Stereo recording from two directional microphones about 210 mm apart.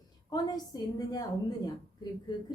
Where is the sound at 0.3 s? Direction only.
20° left (ahead or behind).